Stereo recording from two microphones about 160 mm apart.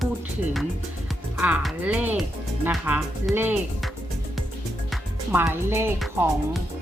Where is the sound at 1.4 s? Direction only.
5° right (ahead or behind).